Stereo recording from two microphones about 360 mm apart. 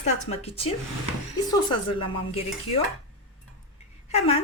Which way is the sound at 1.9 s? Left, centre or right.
Centre.